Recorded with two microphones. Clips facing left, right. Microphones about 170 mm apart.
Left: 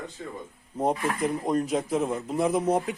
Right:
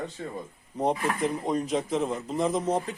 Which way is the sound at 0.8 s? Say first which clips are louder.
Even; 5° left (ahead or behind).